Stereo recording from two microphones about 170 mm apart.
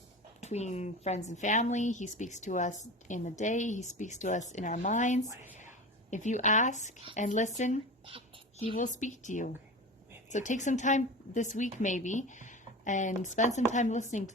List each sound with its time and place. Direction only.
0.4 s a woman's voice: 40° left (ahead or behind)
8.5 s speech: 30° left (ahead or behind)
8.8 s a woman's voice: 45° left (ahead or behind)